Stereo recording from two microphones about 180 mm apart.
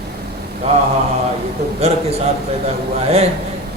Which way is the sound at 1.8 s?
35° right (ahead or behind).